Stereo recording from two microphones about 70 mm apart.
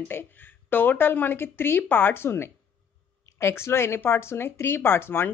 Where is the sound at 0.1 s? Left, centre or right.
Left.